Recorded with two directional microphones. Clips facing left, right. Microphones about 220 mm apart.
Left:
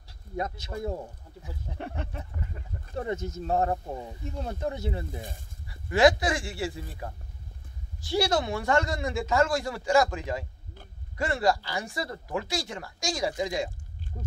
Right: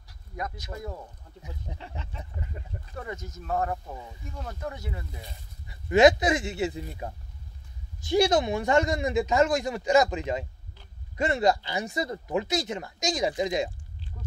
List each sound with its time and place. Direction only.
0.4 s speech: 30° left (ahead or behind)
1.8 s speech: 55° left (ahead or behind)
2.9 s speech: 30° left (ahead or behind)
5.7 s speech: 20° right (ahead or behind)
14.1 s speech: 30° left (ahead or behind)